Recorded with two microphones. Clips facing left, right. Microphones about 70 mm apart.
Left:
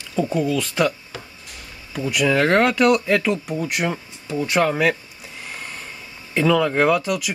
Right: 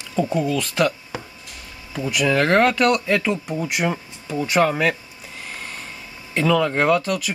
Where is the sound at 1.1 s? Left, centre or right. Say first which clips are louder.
Right 4 dB; right.